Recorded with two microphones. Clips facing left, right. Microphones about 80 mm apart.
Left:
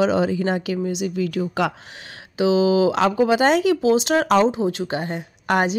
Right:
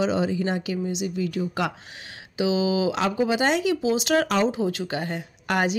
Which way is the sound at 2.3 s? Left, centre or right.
Left.